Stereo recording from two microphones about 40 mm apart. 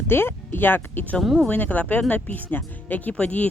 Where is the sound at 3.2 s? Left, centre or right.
Left.